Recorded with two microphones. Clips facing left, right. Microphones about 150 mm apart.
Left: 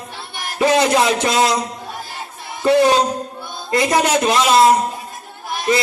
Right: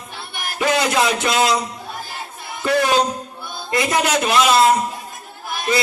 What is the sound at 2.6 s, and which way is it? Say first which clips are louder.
A man's voice: left 4 dB; 30° left (ahead or behind).